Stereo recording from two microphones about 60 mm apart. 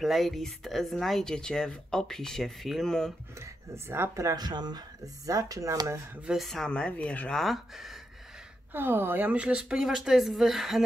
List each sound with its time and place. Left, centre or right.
0.0 s speech: centre
3.3 s speech: right
4.1 s speech: right
6.3 s speech: centre
6.7 s speech: left
7.3 s speech: centre
8.7 s speech: right
9.3 s speech: centre